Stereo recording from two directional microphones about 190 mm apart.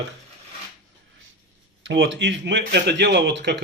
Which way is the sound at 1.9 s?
65° right (ahead or behind).